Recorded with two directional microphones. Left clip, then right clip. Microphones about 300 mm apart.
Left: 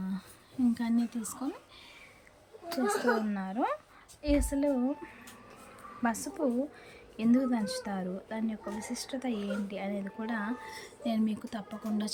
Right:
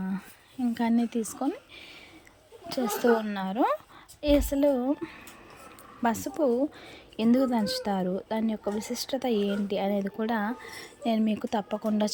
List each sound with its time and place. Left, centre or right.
0.7 s speech: centre
2.6 s speech: right